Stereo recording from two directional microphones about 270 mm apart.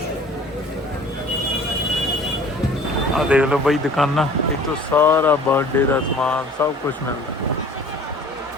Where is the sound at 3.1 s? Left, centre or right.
Centre.